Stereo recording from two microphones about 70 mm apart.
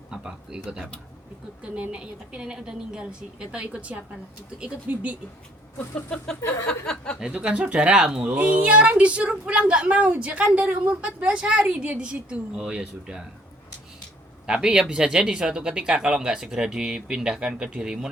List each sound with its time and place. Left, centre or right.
0.1 s a sound: centre
1.7 s a woman's voice: centre
6.8 s speech: centre
7.2 s a woman's voice: centre
14.4 s a woman's voice: centre